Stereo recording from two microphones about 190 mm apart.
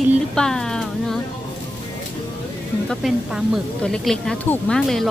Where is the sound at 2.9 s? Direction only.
Centre (ahead or behind).